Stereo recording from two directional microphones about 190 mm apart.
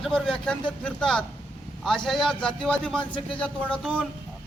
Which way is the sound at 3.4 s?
5° left (ahead or behind).